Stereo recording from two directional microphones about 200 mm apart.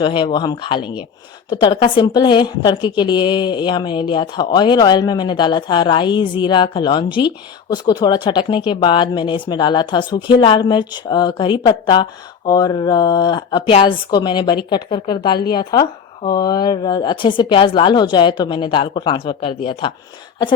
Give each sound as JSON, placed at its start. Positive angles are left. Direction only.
{"t": 0.0, "sound": "a woman's voice", "side_deg": 25}